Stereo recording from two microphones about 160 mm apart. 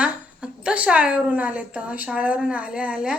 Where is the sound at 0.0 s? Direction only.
5° right (ahead or behind).